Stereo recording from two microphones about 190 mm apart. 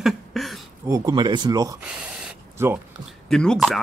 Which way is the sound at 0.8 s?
20° right (ahead or behind).